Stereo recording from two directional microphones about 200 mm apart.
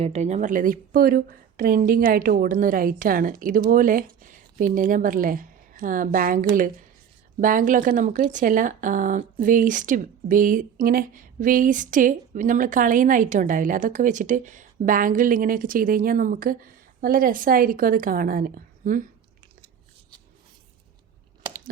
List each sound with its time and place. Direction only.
0.0 s a woman's voice: 35° right (ahead or behind)